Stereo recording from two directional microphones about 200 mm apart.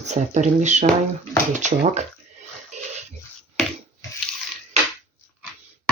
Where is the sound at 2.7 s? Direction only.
35° right (ahead or behind).